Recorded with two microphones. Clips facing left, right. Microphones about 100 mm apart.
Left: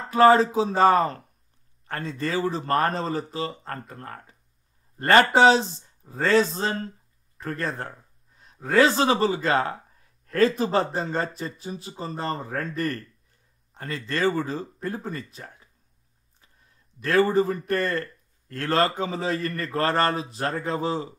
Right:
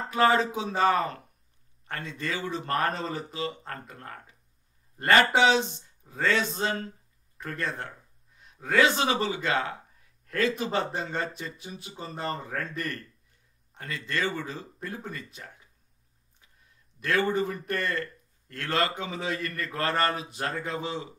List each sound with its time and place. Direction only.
0.1 s a man's voice: 35° left (ahead or behind)
10.2 s a sound: 35° left (ahead or behind)
10.6 s a man's voice: 35° left (ahead or behind)
17.0 s a man's voice: 35° left (ahead or behind)